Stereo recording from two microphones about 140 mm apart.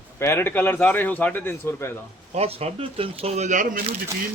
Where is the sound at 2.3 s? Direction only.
50° right (ahead or behind).